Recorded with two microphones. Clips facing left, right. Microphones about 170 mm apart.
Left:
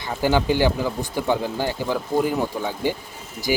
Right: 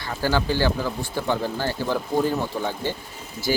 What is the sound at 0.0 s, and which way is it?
Speech, 15° left (ahead or behind).